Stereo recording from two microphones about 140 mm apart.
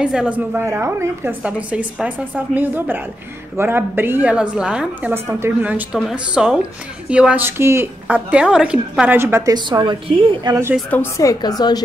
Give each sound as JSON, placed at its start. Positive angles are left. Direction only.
{"t": 0.0, "sound": "a woman's voice", "side_deg": -5}
{"t": 9.5, "sound": "a woman's voice", "side_deg": -30}
{"t": 10.9, "sound": "a woman's voice", "side_deg": 20}